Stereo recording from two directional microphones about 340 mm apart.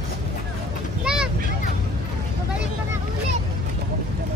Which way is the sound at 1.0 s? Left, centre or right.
Centre.